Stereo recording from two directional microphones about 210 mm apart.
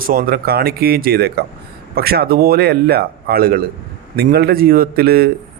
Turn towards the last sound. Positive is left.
turn(degrees=-45)  # may be behind; listen again after turning